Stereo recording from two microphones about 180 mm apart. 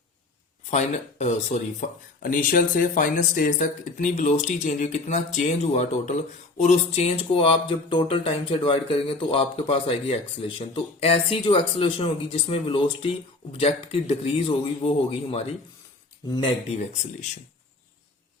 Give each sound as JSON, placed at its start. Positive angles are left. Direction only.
{"t": 0.7, "sound": "speech", "side_deg": 40}
{"t": 16.7, "sound": "speech", "side_deg": 40}